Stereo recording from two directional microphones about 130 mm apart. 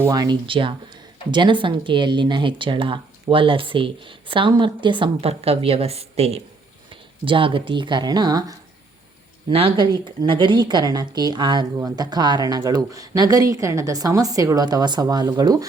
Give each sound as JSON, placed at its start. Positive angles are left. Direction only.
{"t": 0.1, "sound": "speech", "side_deg": -30}
{"t": 6.9, "sound": "speech", "side_deg": -40}
{"t": 9.5, "sound": "speech", "side_deg": -45}